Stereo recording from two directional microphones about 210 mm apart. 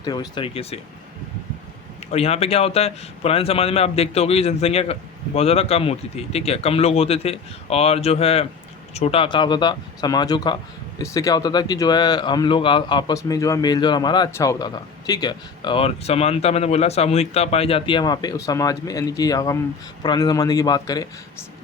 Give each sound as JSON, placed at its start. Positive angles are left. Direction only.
{"t": 0.0, "sound": "speech", "side_deg": 20}
{"t": 2.1, "sound": "speech", "side_deg": 30}